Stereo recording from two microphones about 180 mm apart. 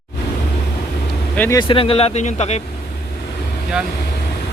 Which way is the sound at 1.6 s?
30° left (ahead or behind).